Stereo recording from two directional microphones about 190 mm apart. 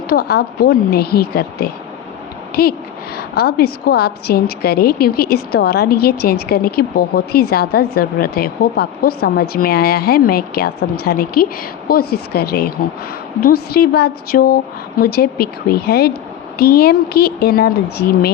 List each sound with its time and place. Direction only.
0.1 s a woman's voice: 55° left (ahead or behind)